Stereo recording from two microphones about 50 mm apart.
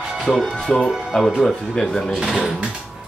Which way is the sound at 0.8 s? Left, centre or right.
Centre.